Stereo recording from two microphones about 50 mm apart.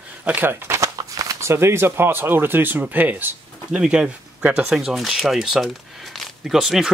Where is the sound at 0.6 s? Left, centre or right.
Right.